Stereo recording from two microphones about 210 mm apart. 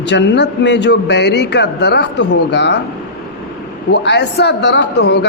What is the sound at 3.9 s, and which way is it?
A man's voice, 55° left (ahead or behind).